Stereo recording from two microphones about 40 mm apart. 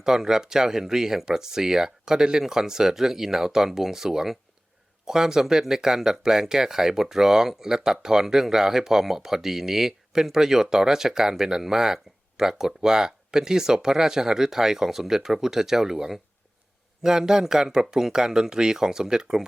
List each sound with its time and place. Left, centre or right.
0.0 s speech: centre